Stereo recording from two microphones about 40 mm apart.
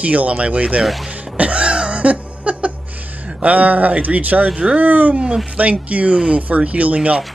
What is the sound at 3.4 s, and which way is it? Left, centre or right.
Speech, right.